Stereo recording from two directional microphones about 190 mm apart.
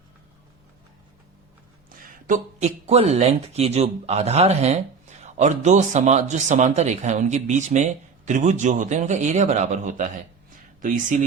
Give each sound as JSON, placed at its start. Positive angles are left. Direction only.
{"t": 2.2, "sound": "speech", "side_deg": -40}